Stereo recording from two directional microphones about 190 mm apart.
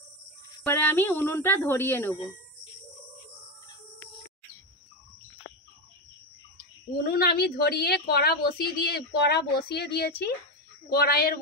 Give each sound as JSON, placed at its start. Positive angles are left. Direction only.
{"t": 0.7, "sound": "a woman's voice", "side_deg": 10}
{"t": 7.0, "sound": "a woman's voice", "side_deg": 55}